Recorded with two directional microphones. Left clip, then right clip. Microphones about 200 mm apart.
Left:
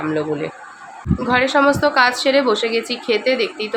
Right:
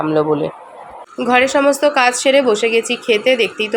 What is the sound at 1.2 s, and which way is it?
Speech, 10° right (ahead or behind).